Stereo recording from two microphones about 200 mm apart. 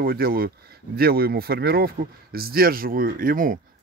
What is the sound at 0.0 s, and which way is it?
Speech, 50° right (ahead or behind).